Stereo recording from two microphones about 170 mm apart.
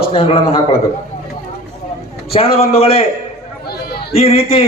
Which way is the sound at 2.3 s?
35° left (ahead or behind).